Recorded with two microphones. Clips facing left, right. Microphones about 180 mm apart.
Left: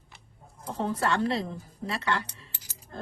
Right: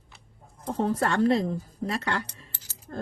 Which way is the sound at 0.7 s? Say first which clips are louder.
Right 2 dB; 45° right (ahead or behind).